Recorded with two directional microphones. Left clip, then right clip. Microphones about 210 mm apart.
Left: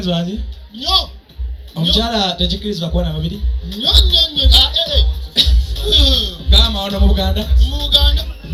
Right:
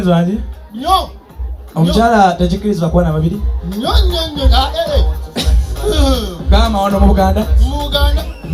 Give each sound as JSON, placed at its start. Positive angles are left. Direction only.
{"t": 0.0, "sound": "speech", "side_deg": -15}